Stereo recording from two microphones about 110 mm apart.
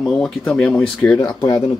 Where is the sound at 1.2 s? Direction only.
35° left (ahead or behind).